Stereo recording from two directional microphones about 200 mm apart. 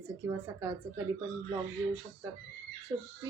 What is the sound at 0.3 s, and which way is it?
Speech, 15° right (ahead or behind).